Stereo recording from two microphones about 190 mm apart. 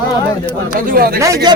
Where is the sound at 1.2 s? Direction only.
20° right (ahead or behind).